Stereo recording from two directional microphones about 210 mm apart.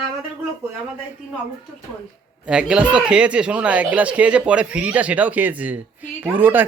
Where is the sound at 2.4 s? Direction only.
5° right (ahead or behind).